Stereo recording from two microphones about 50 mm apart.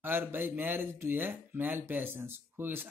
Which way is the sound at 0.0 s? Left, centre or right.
Right.